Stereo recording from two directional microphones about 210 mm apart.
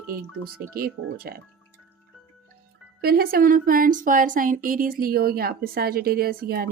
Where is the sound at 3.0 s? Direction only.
45° right (ahead or behind).